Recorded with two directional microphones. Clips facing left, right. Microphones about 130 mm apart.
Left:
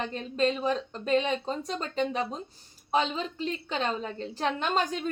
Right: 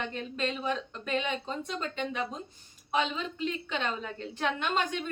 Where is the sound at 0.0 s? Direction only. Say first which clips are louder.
Left 6 dB; 35° left (ahead or behind).